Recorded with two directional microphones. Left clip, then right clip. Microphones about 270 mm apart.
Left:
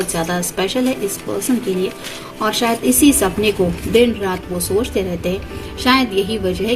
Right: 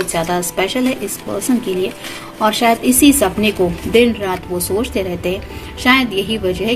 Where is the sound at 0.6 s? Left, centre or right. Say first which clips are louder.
Even; right.